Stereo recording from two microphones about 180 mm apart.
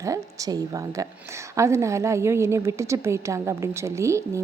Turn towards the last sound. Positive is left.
turn(degrees=-15)  # may be behind; listen again after turning